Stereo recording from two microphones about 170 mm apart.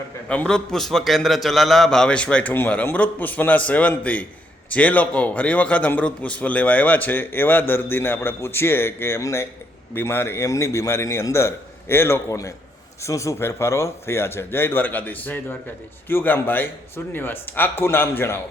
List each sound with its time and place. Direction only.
0.3 s a man's voice: 5° left (ahead or behind)